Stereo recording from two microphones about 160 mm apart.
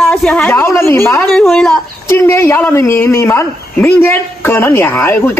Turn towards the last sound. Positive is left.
turn(degrees=15)  # may be behind; listen again after turning